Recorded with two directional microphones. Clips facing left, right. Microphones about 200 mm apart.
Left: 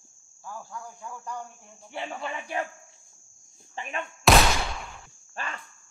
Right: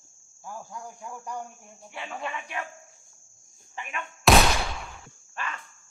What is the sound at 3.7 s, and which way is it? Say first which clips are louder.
Speech: left 3 dB; 30° left (ahead or behind).